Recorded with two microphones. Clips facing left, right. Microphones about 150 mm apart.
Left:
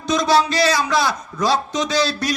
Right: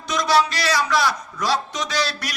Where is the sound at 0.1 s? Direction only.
25° left (ahead or behind).